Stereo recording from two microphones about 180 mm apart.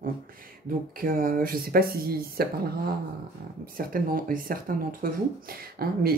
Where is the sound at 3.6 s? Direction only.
55° right (ahead or behind).